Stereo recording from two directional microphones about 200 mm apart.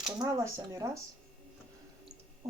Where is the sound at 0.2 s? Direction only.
15° right (ahead or behind).